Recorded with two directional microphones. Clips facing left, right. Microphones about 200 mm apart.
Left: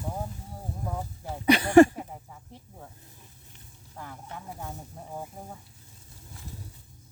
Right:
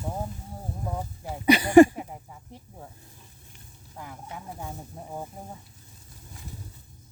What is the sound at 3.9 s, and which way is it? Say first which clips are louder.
Speech: right 1 dB; 10° right (ahead or behind).